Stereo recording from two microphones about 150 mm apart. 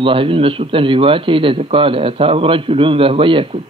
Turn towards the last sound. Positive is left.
turn(degrees=-35)  # may be behind; listen again after turning